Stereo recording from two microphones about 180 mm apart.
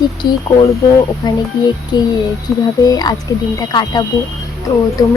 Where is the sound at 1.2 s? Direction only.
25° left (ahead or behind).